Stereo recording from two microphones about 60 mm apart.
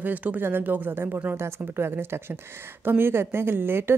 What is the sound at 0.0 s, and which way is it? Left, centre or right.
Speech, right.